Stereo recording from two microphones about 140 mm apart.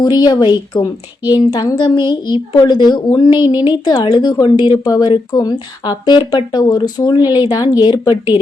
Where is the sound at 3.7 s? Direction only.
30° left (ahead or behind).